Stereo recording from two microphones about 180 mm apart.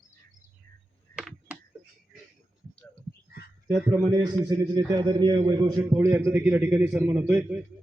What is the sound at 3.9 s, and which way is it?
A man's voice, 20° right (ahead or behind).